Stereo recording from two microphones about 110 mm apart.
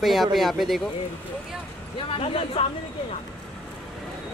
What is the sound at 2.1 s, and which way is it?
Speech, 60° left (ahead or behind).